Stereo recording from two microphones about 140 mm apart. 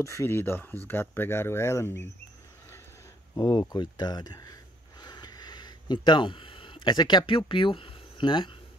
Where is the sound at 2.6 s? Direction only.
20° left (ahead or behind).